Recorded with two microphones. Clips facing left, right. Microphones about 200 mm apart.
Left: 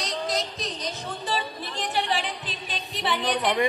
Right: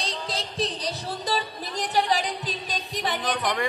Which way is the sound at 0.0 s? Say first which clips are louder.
Left 3 dB; 30° right (ahead or behind).